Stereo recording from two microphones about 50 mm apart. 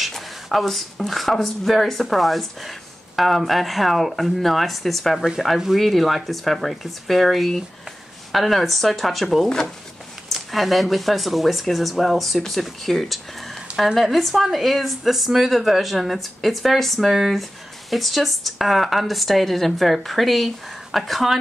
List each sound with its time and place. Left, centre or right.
0.0 s speech: centre